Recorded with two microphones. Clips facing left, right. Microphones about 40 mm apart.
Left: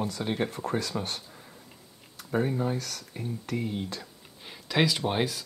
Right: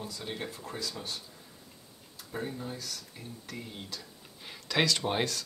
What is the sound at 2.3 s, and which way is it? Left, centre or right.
Speech, left.